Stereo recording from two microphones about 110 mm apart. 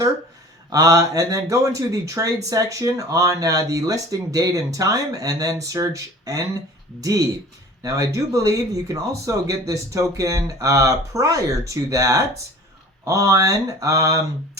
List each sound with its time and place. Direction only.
0.7 s speech: 30° right (ahead or behind)
7.8 s speech: 35° right (ahead or behind)